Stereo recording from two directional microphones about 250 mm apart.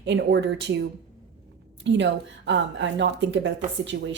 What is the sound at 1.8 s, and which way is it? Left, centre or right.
A woman's voice, right.